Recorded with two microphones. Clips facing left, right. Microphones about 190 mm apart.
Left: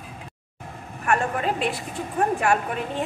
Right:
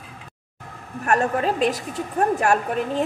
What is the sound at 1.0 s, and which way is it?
Speech, 40° right (ahead or behind).